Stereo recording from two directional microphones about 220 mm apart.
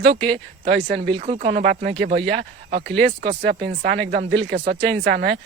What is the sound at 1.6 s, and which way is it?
Speech, 40° right (ahead or behind).